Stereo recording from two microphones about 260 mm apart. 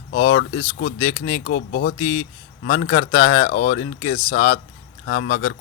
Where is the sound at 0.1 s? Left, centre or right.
Left.